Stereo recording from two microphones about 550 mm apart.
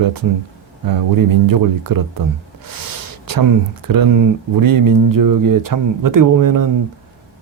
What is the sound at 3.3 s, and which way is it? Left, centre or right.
Speech, right.